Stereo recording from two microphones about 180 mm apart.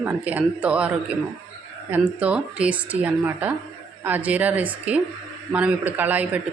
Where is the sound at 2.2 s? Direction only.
5° right (ahead or behind).